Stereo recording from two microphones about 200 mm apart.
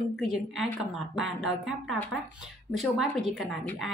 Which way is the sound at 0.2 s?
Centre (ahead or behind).